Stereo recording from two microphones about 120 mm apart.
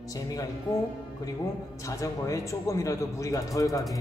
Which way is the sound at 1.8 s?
25° left (ahead or behind).